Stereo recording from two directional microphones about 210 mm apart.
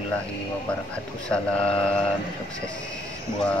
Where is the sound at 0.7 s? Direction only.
5° left (ahead or behind).